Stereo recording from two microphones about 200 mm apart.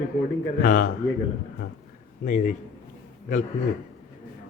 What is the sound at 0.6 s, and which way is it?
Speech, 45° left (ahead or behind).